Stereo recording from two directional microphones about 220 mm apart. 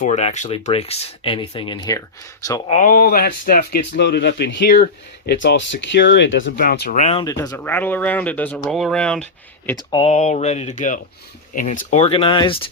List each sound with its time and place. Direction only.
0.0 s speech: 30° left (ahead or behind)
2.6 s speech: 35° left (ahead or behind)
6.9 s speech: 30° left (ahead or behind)
7.3 s speech: 15° left (ahead or behind)
9.6 s speech: 20° left (ahead or behind)